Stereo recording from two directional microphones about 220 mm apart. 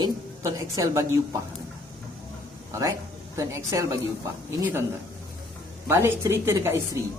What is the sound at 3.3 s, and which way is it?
Speech, 15° right (ahead or behind).